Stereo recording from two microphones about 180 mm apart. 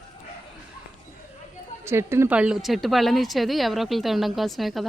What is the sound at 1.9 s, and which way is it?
A woman's voice, 15° right (ahead or behind).